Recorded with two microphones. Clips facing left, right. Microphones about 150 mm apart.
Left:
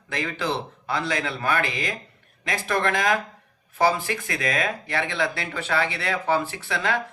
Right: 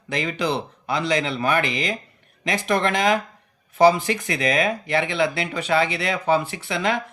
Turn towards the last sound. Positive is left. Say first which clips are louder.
# right 2 dB
turn(degrees=-20)  # may be behind; listen again after turning